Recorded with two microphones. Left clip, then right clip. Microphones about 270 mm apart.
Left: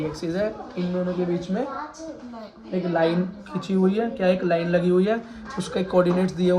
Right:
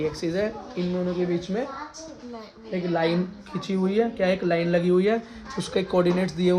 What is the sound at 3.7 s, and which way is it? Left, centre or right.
Speech, right.